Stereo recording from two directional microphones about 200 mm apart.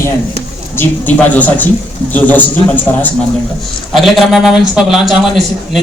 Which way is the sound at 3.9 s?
Centre (ahead or behind).